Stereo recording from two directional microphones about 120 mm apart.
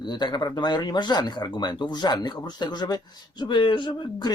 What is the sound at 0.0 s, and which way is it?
Speech, 35° left (ahead or behind).